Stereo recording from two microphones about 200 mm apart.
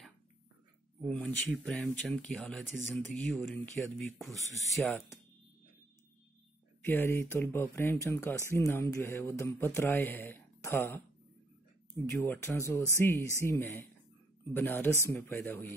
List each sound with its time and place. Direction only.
1.0 s speech: 5° left (ahead or behind)
4.4 s speech: 15° right (ahead or behind)
4.7 s speech: 5° left (ahead or behind)
6.8 s speech: 10° left (ahead or behind)
12.1 s speech: 10° left (ahead or behind)